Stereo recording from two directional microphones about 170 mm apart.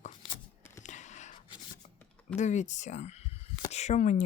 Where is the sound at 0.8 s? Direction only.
45° left (ahead or behind).